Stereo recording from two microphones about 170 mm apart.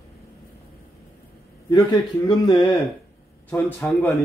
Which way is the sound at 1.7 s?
25° left (ahead or behind).